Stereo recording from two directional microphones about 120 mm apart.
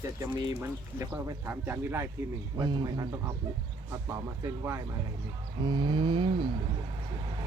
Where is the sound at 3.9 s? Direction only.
25° right (ahead or behind).